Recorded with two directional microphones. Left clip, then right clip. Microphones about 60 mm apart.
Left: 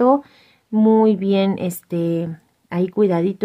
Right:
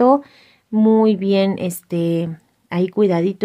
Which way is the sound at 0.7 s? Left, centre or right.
Centre.